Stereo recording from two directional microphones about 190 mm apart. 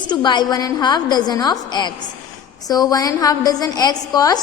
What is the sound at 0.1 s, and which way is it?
A woman's voice, 20° left (ahead or behind).